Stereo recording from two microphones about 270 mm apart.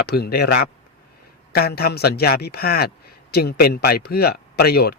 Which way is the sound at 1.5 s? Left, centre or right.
Left.